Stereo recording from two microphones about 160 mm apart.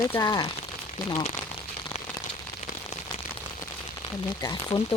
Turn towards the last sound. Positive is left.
turn(degrees=25)  # may be behind; listen again after turning